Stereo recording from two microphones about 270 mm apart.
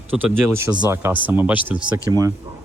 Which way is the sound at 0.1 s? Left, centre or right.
Centre.